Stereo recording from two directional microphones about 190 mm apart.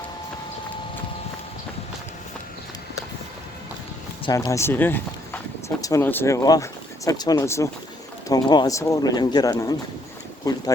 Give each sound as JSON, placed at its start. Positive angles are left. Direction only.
{"t": 4.3, "sound": "speech", "side_deg": 20}